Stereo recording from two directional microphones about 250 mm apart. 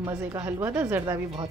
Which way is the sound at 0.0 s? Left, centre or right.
Centre.